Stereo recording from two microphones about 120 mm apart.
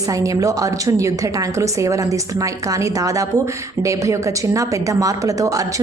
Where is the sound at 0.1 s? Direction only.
30° right (ahead or behind).